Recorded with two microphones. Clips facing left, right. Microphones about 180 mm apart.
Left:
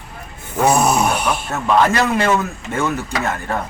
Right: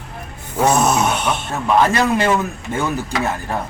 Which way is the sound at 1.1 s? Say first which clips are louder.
Left 1 dB; 25° right (ahead or behind).